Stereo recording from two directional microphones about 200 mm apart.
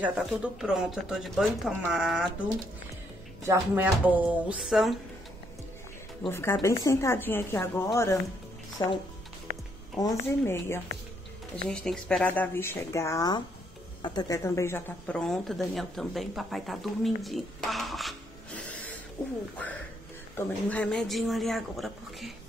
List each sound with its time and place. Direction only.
0.0 s speech: 5° right (ahead or behind)
3.4 s speech: 10° right (ahead or behind)
6.2 s speech: 10° left (ahead or behind)
9.5 s music: 45° right (ahead or behind)
9.9 s speech: 15° left (ahead or behind)
18.7 s a sound: 5° left (ahead or behind)
20.3 s speech: 5° left (ahead or behind)